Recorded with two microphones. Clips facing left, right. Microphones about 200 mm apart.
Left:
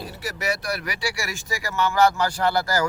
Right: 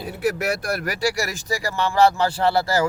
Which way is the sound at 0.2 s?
55° right (ahead or behind).